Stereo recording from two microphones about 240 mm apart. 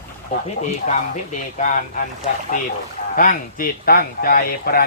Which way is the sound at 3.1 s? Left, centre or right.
Left.